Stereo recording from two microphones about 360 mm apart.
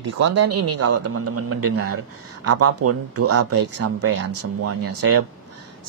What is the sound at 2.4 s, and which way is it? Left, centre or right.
Speech, right.